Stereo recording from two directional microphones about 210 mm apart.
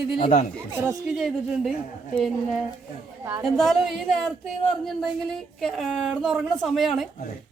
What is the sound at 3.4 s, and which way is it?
Speech, centre (ahead or behind).